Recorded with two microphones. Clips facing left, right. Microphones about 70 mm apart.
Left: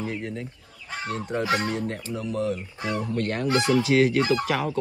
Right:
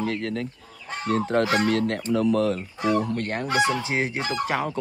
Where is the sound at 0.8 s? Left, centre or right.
Right.